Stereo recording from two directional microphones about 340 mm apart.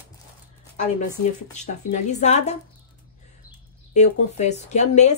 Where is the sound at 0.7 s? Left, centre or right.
Left.